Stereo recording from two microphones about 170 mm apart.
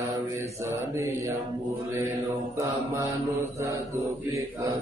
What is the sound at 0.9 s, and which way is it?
Mantra, 15° right (ahead or behind).